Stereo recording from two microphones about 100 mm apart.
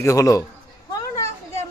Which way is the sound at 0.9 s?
30° left (ahead or behind).